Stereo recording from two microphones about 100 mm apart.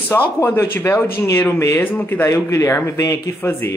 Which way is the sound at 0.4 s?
25° left (ahead or behind).